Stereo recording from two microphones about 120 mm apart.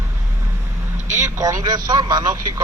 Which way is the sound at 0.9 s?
90° right.